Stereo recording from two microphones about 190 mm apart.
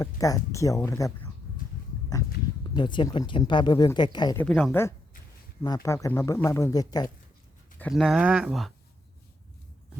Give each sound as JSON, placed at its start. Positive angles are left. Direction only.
{"t": 0.0, "sound": "speech", "side_deg": 15}
{"t": 2.1, "sound": "a sound", "side_deg": 15}
{"t": 2.7, "sound": "speech", "side_deg": 25}
{"t": 4.4, "sound": "speech", "side_deg": 5}
{"t": 7.8, "sound": "speech", "side_deg": 0}